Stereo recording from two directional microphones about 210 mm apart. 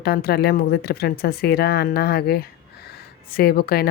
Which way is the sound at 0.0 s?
50° left (ahead or behind).